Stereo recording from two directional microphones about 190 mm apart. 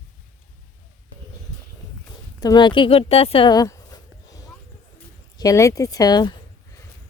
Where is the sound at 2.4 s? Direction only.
20° left (ahead or behind).